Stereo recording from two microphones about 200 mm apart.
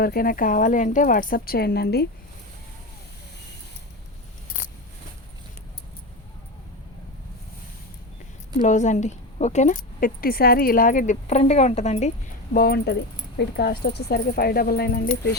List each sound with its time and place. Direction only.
0.0 s speech: 45° left (ahead or behind)
8.5 s speech: 35° left (ahead or behind)
12.5 s speech: 50° left (ahead or behind)